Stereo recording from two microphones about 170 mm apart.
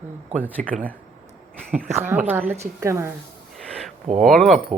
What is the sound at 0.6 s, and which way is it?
Speech, 50° right (ahead or behind).